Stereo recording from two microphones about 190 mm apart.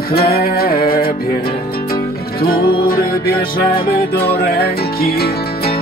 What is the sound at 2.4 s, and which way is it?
Music, 50° left (ahead or behind).